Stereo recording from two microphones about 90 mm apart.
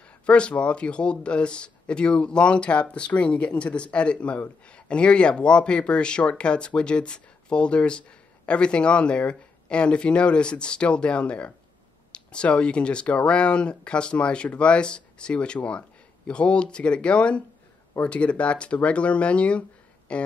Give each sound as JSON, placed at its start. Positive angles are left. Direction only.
{"t": 0.3, "sound": "speech", "side_deg": 10}